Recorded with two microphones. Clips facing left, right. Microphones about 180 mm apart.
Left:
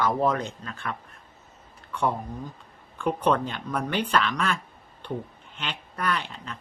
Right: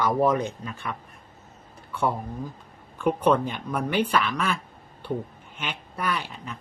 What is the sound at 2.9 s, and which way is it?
Speech, 5° right (ahead or behind).